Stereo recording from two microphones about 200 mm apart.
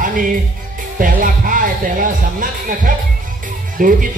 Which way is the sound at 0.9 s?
45° right (ahead or behind).